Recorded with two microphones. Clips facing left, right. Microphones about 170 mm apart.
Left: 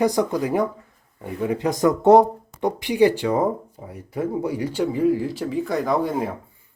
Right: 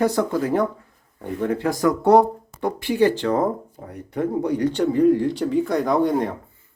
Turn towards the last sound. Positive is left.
turn(degrees=5)  # may be behind; listen again after turning